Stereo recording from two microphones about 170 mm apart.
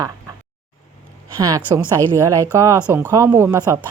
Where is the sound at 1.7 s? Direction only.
25° right (ahead or behind).